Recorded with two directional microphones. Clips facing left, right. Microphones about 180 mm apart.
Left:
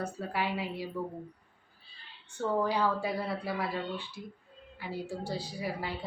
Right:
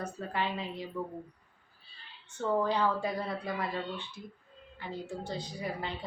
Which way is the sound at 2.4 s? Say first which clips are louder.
Even; 10° left (ahead or behind).